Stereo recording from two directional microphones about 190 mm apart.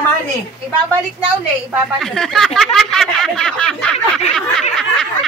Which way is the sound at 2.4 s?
Centre (ahead or behind).